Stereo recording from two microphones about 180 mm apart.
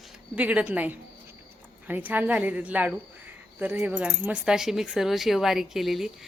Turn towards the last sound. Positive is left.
turn(degrees=0)  # may be behind; listen again after turning